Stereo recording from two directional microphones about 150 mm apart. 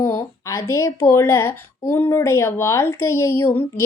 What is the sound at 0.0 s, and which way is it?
A woman's voice, 15° left (ahead or behind).